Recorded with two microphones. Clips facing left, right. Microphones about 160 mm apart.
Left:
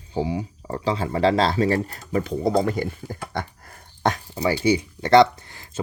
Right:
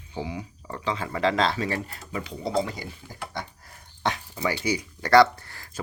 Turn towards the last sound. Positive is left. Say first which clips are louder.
# even
turn(degrees=20)  # may be behind; listen again after turning